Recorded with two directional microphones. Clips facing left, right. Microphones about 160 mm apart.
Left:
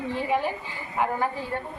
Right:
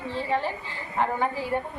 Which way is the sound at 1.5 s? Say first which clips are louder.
Right 4 dB; 15° right (ahead or behind).